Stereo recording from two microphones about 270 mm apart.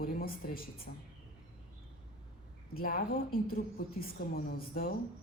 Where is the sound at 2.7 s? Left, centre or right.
Left.